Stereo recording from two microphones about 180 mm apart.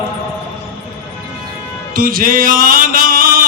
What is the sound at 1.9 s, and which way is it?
Music, 50° right (ahead or behind).